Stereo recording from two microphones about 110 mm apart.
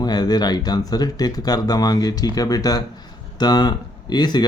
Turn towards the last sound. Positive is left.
turn(degrees=40)  # may be behind; listen again after turning